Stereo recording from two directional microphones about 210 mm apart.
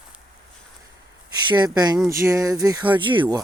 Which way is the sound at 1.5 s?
20° right (ahead or behind).